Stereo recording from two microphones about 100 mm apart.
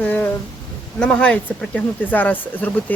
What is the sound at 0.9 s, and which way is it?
Speech, 10° left (ahead or behind).